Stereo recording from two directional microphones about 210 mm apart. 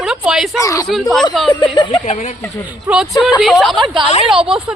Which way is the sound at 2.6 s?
5° right (ahead or behind).